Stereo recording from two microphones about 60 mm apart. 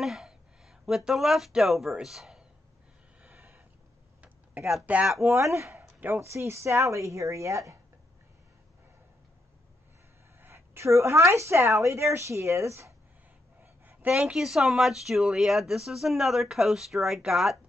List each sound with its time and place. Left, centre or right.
0.0 s speech: centre
3.3 s a sound: right
4.9 s speech: right
5.2 s speech: right
5.8 s a sound: right
6.2 s a woman's voice: right
10.4 s a woman's voice: right
13.6 s a sound: right
14.1 s speech: centre